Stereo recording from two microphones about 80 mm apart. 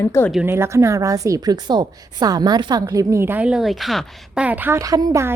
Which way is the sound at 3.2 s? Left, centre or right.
Right.